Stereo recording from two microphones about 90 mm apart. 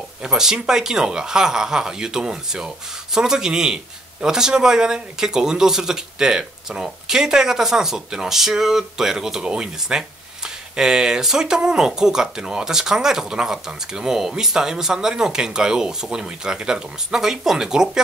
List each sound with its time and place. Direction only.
0.2 s speech: 5° right (ahead or behind)